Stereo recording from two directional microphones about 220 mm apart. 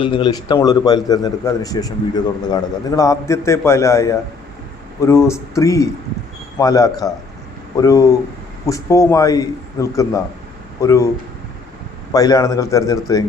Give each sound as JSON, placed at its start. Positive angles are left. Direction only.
{"t": 0.0, "sound": "a man's voice", "side_deg": 20}
{"t": 12.1, "sound": "a man's voice", "side_deg": 15}